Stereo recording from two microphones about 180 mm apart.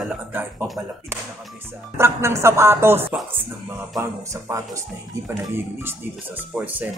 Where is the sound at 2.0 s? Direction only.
15° right (ahead or behind).